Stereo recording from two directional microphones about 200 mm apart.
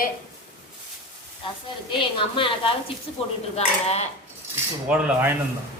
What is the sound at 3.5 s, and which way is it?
Dishes, 30° left (ahead or behind).